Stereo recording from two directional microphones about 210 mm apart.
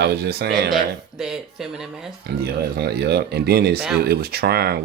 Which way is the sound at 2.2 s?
50° right (ahead or behind).